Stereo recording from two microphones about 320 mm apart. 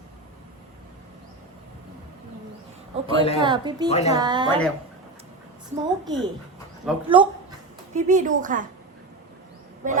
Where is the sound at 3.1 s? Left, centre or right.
Centre.